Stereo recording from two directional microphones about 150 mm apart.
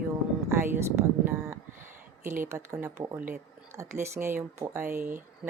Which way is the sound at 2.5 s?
15° right (ahead or behind).